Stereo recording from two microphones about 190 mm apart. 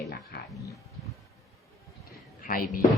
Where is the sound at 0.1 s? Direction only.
55° left (ahead or behind).